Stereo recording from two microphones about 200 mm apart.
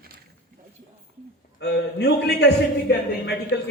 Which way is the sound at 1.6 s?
55° left (ahead or behind).